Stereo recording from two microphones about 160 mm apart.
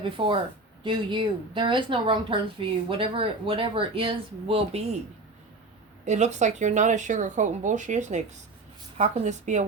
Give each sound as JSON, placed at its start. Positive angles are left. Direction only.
{"t": 0.0, "sound": "speech", "side_deg": -35}
{"t": 6.1, "sound": "speech", "side_deg": -45}